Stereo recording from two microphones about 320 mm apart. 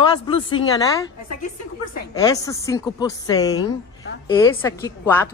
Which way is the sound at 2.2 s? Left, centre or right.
Centre.